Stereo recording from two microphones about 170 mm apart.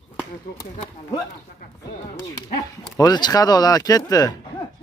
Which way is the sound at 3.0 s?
25° left (ahead or behind).